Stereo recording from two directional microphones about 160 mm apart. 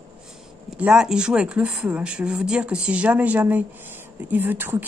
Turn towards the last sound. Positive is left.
turn(degrees=-10)  # may be behind; listen again after turning